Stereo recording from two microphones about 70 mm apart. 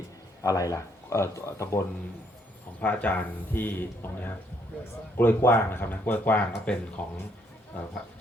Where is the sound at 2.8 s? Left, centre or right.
Left.